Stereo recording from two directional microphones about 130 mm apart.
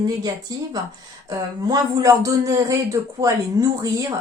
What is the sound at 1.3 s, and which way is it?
Speech, 25° right (ahead or behind).